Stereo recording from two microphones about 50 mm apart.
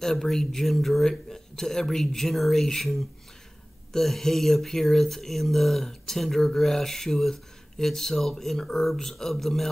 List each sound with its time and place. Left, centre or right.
0.0 s speech: centre